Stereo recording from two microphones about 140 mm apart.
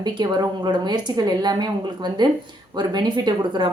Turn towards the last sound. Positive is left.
turn(degrees=-30)  # may be behind; listen again after turning